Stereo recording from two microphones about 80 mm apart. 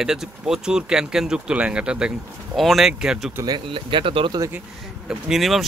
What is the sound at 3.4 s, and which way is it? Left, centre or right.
Speech, right.